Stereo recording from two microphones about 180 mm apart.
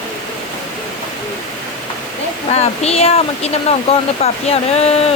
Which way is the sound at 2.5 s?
35° left (ahead or behind).